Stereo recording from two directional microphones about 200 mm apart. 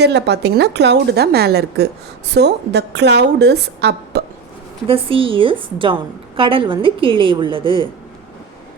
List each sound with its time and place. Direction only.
0.0 s a woman's voice: 55° right (ahead or behind)
4.9 s a woman's voice: 25° right (ahead or behind)